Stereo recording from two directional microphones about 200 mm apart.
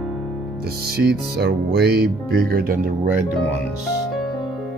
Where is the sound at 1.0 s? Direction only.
55° right (ahead or behind).